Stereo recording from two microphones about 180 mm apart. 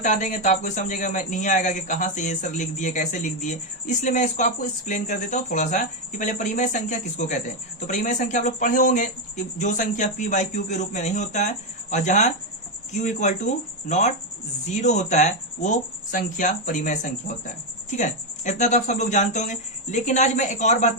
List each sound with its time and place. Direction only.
0.0 s a man's voice: 45° left (ahead or behind)